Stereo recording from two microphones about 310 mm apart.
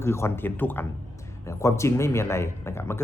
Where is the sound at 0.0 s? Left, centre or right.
Centre.